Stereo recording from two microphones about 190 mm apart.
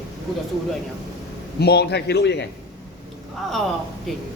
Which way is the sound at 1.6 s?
60° left (ahead or behind).